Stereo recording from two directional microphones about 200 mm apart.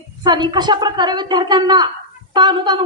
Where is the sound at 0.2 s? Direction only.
20° right (ahead or behind).